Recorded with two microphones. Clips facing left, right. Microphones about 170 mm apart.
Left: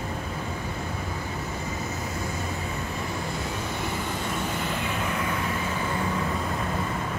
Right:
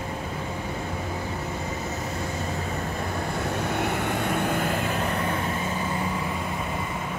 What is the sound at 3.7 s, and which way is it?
Vehicle, 65° right (ahead or behind).